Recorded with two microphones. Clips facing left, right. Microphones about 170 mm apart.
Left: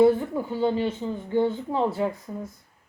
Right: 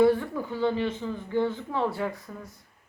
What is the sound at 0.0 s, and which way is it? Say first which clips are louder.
Speech: left 3 dB; 25° left (ahead or behind).